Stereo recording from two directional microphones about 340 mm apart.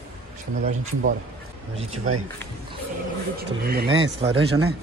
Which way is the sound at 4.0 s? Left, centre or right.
Centre.